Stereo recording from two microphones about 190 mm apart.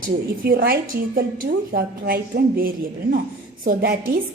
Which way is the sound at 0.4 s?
55° right (ahead or behind).